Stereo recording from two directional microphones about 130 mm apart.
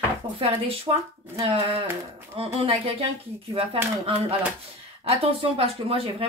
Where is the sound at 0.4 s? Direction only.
45° right (ahead or behind).